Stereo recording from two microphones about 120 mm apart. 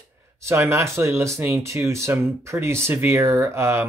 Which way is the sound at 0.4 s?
20° right (ahead or behind).